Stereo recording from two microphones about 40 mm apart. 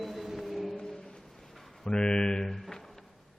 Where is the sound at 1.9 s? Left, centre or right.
Left.